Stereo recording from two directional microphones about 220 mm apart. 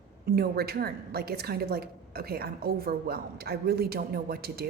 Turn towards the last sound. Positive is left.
turn(degrees=-45)  # may be behind; listen again after turning